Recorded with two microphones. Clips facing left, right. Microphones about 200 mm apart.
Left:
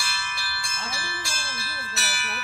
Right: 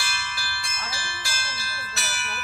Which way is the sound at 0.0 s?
Centre (ahead or behind).